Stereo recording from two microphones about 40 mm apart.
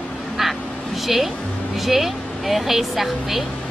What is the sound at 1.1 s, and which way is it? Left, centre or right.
A woman's voice, centre.